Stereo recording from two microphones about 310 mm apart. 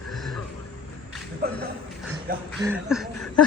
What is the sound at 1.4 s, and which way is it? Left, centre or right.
Speech, right.